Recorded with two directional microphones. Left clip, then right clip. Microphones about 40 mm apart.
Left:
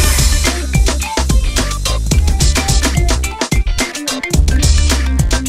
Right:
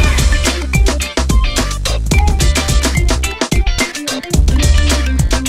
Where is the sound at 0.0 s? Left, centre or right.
Centre.